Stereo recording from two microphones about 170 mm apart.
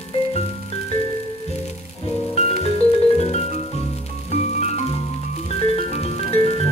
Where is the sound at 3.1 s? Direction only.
40° left (ahead or behind).